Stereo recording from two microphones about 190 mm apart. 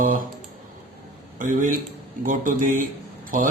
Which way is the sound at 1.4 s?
45° right (ahead or behind).